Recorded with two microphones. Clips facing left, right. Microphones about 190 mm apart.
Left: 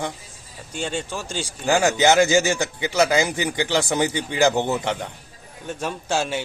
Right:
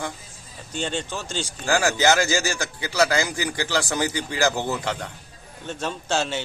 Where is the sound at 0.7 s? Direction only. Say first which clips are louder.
Left 1 dB; 10° left (ahead or behind).